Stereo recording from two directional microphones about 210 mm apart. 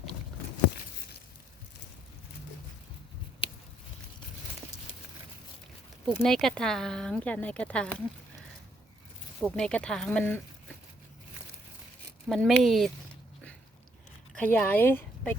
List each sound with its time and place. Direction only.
6.1 s speech: centre (ahead or behind)
12.3 s speech: centre (ahead or behind)
14.3 s speech: 5° left (ahead or behind)